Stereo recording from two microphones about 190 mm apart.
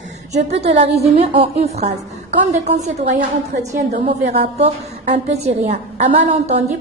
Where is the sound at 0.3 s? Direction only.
35° right (ahead or behind).